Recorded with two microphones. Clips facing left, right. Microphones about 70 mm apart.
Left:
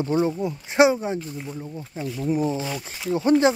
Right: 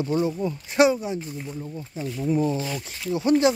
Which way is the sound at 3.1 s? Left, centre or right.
Left.